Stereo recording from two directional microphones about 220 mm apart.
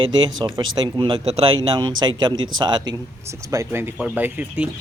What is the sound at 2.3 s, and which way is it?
Speech, 65° right (ahead or behind).